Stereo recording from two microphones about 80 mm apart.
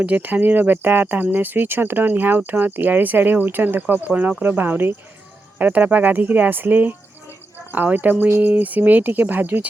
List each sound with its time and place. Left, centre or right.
0.0 s speech: right